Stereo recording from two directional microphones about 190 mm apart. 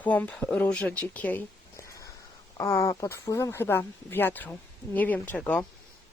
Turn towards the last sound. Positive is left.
turn(degrees=5)  # may be behind; listen again after turning